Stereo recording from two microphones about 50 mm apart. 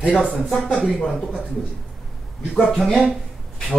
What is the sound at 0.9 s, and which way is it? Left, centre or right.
Speech, centre.